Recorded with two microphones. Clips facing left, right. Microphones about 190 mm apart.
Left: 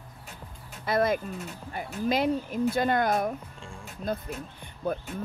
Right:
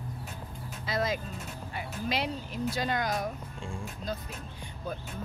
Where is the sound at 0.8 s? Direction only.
55° left (ahead or behind).